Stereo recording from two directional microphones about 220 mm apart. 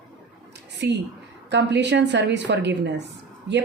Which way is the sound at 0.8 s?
50° right (ahead or behind).